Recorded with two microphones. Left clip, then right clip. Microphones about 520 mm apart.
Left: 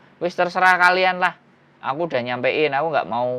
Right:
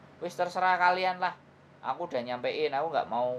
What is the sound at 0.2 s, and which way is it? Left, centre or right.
Speech, left.